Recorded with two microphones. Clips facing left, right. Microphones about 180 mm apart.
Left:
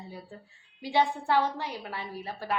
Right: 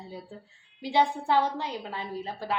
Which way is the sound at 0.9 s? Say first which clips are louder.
Right 1 dB; 15° right (ahead or behind).